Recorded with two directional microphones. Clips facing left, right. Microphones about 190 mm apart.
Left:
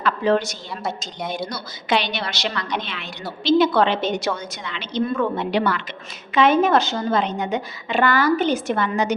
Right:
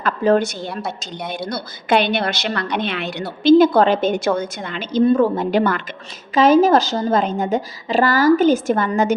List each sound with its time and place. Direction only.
0.0 s a woman's voice: 50° right (ahead or behind); by 3.2 s 65° right (ahead or behind)
3.8 s a woman's voice: 45° right (ahead or behind)
5.0 s a woman's voice: 35° right (ahead or behind)